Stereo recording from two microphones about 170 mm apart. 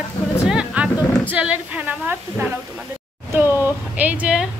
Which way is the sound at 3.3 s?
15° right (ahead or behind).